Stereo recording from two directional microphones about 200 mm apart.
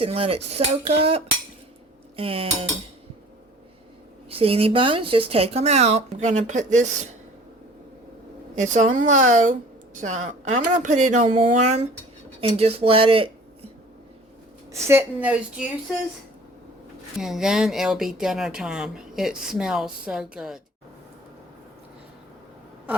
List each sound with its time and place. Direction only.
0.0 s speech: 30° right (ahead or behind)
4.3 s speech: 30° right (ahead or behind)
8.5 s a woman's voice: 35° right (ahead or behind)
14.7 s a woman's voice: 15° right (ahead or behind)
17.2 s speech: centre (ahead or behind)